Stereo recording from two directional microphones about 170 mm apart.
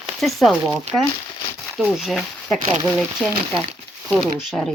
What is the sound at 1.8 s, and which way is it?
Speech, centre (ahead or behind).